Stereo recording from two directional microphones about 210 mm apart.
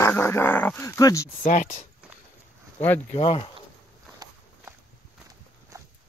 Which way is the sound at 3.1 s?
25° left (ahead or behind).